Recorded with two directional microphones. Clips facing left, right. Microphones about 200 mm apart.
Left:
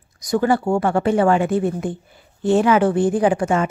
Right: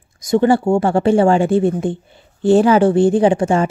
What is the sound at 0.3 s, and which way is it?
A woman's voice, 25° right (ahead or behind).